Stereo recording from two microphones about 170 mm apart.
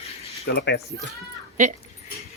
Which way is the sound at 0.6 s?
80° left.